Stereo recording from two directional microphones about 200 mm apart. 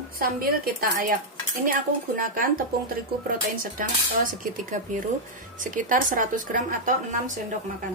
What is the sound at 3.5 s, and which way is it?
Speech, 45° right (ahead or behind).